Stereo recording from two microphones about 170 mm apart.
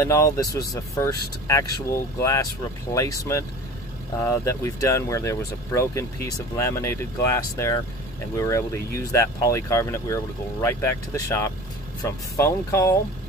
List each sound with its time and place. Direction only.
0.0 s speech: 20° left (ahead or behind)
2.9 s speech: 20° left (ahead or behind)